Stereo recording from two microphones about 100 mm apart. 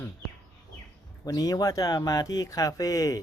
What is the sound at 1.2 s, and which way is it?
Speech, 40° left (ahead or behind).